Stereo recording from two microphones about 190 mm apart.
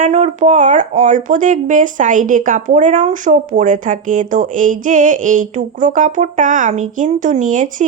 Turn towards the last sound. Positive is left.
turn(degrees=-45)  # may be behind; listen again after turning